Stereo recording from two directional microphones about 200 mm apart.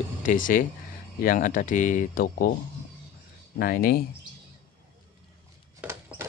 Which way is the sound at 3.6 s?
50° left (ahead or behind).